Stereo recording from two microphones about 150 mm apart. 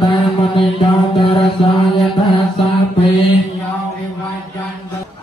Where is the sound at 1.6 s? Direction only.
40° left (ahead or behind).